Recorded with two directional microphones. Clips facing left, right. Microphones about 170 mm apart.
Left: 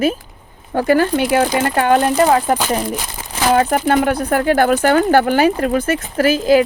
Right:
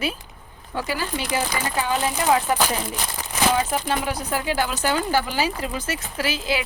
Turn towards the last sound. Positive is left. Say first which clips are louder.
# left 13 dB
turn(degrees=50)  # may be behind; listen again after turning